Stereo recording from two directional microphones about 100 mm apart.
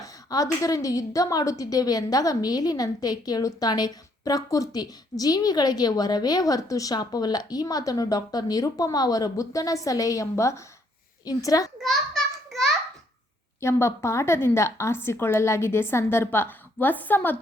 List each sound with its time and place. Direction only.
0.0 s a woman's voice: 35° left (ahead or behind)
11.8 s a sound: centre (ahead or behind)
13.6 s a woman's voice: 30° left (ahead or behind)